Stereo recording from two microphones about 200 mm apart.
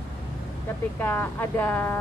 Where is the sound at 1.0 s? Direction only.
10° left (ahead or behind).